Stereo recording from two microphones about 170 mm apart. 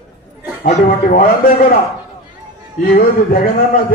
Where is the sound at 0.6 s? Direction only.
60° left (ahead or behind).